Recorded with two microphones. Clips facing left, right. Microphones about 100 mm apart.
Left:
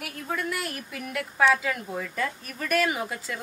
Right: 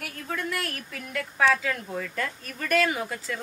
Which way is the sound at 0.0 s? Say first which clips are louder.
Left 1 dB; 5° left (ahead or behind).